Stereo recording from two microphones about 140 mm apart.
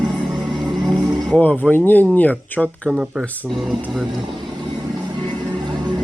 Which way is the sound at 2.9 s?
5° right (ahead or behind).